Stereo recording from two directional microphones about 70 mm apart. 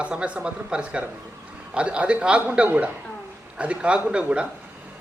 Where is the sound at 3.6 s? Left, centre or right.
Centre.